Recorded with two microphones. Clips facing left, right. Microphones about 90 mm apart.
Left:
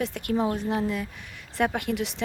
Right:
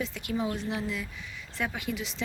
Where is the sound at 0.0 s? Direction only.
55° left (ahead or behind).